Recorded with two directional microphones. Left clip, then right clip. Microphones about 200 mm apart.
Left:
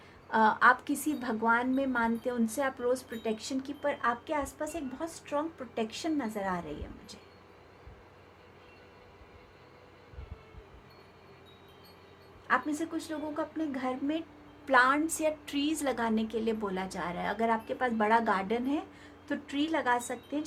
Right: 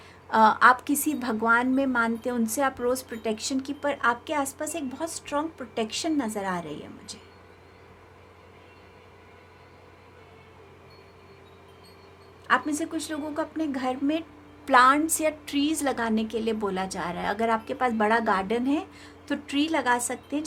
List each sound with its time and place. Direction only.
0.3 s a woman's voice: 35° right (ahead or behind)
12.5 s a woman's voice: 35° right (ahead or behind)